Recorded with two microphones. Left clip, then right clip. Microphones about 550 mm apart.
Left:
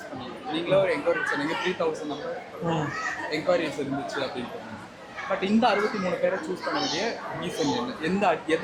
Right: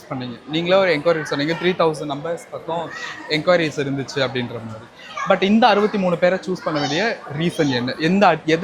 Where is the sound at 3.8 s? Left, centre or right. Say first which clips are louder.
Right 8 dB; right.